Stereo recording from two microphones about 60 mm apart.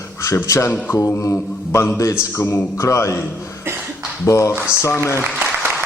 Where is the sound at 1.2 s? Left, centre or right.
Left.